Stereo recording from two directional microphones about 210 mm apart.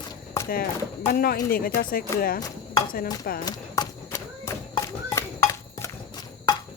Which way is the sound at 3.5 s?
15° left (ahead or behind).